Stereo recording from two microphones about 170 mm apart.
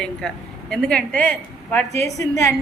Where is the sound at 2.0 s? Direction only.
20° left (ahead or behind).